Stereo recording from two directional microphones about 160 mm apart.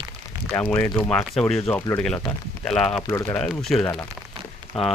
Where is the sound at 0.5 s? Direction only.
10° left (ahead or behind).